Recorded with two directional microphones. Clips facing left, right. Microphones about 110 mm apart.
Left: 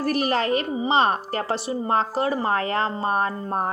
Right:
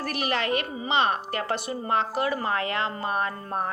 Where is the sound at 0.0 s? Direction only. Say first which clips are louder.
Left 5 dB; 35° left (ahead or behind).